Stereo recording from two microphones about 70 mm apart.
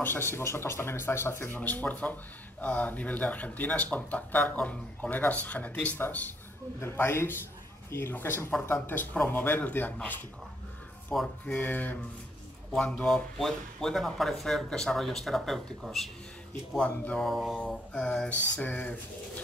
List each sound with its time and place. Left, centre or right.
0.0 s speech: left
6.8 s speech: left
11.1 s mantra: centre
11.4 s speech: left
12.7 s speech: centre
16.7 s mantra: centre
18.6 s speech: left